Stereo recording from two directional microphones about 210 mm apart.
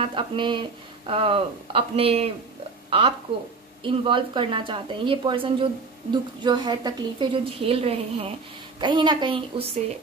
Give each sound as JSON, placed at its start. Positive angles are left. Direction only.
{"t": 0.0, "sound": "speech", "side_deg": -25}